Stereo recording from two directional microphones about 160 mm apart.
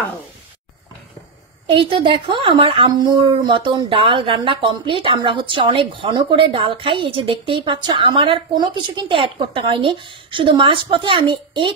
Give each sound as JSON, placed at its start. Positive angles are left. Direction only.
{"t": 1.7, "sound": "a woman's voice", "side_deg": -30}